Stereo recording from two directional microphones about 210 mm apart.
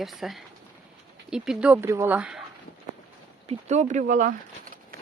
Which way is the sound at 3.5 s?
30° right (ahead or behind).